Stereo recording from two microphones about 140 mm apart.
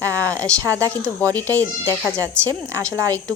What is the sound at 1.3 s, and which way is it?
Speech, 15° left (ahead or behind).